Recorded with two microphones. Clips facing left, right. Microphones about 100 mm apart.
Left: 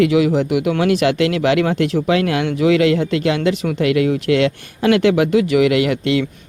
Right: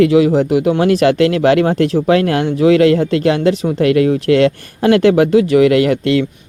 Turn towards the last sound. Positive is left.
turn(degrees=-45)  # may be behind; listen again after turning